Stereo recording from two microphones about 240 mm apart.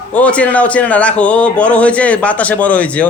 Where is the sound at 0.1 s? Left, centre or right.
Centre.